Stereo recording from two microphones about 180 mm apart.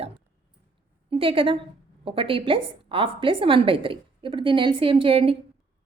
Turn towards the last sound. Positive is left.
turn(degrees=-30)  # may be behind; listen again after turning